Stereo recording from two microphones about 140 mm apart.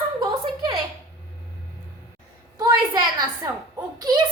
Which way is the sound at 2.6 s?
30° right (ahead or behind).